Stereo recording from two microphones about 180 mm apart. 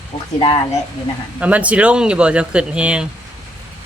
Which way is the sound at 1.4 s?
10° right (ahead or behind).